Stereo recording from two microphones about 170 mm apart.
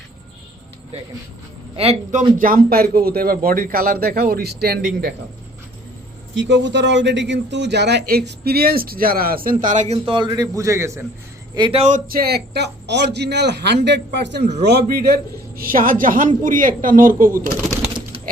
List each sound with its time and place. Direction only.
1.7 s speech: 35° right (ahead or behind)
2.4 s speech: 55° right (ahead or behind)
6.3 s speech: 90° right; by 11.0 s 15° right (ahead or behind)
11.5 s a man's voice: 30° right (ahead or behind); by 14.4 s 90° right
14.6 s speech: 75° right (ahead or behind); by 17.4 s 55° right (ahead or behind)